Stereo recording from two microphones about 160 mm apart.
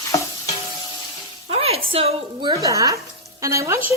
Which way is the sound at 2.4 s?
25° right (ahead or behind).